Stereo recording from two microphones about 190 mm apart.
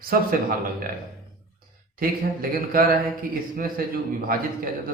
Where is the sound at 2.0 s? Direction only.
50° right (ahead or behind).